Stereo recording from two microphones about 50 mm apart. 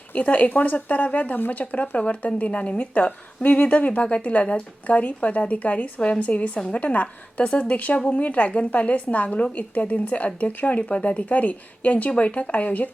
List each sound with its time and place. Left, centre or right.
0.1 s speech: left